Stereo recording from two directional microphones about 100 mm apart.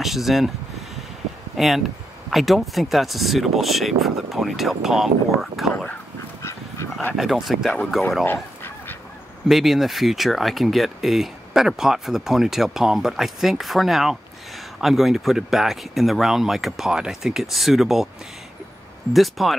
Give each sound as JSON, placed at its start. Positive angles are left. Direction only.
{"t": 0.0, "sound": "speech", "side_deg": 0}
{"t": 1.6, "sound": "speech", "side_deg": 0}
{"t": 6.4, "sound": "dog", "side_deg": 25}
{"t": 7.2, "sound": "speech", "side_deg": 0}
{"t": 8.3, "sound": "honk", "side_deg": 20}
{"t": 9.5, "sound": "speech", "side_deg": 0}
{"t": 19.1, "sound": "speech", "side_deg": 0}